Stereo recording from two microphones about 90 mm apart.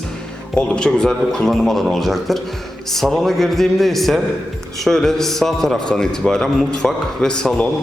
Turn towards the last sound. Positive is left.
turn(degrees=10)  # may be behind; listen again after turning